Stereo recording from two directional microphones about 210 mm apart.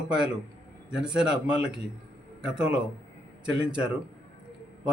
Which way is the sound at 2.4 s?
5° right (ahead or behind).